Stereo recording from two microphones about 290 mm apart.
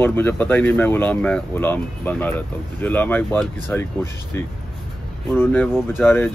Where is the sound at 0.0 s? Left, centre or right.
Centre.